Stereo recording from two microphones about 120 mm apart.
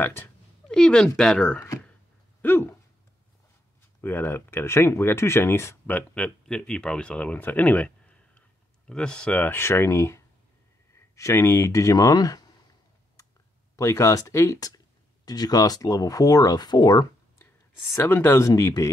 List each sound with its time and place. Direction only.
0.0 s speech: 20° left (ahead or behind)
0.7 s speech: 5° left (ahead or behind)
2.4 s a sound: 15° left (ahead or behind)
4.0 s speech: 20° left (ahead or behind)
13.7 s speech: 25° left (ahead or behind)
17.9 s speech: 15° left (ahead or behind)